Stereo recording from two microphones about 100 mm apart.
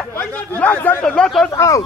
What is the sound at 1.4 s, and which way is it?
Speech, 30° left (ahead or behind).